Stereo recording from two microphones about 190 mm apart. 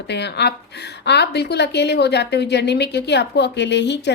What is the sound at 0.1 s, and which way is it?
A woman's voice, 65° left (ahead or behind).